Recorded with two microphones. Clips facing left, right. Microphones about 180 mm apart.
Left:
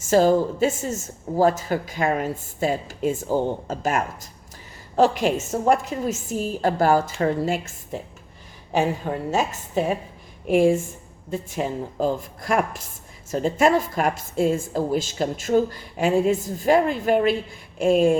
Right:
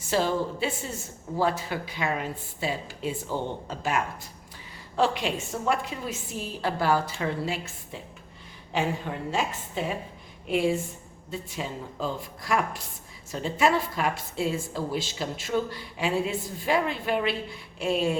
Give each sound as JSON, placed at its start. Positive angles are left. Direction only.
{"t": 0.0, "sound": "a woman's voice", "side_deg": 45}